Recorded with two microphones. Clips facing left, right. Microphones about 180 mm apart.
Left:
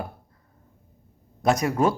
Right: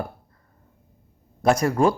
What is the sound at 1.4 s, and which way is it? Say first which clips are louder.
Speech: right 2 dB; centre (ahead or behind).